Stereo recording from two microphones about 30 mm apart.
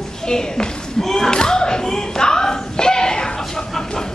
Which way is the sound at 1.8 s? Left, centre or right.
Left.